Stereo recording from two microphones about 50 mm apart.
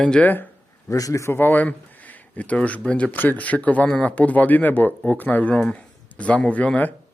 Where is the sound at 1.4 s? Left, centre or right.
Left.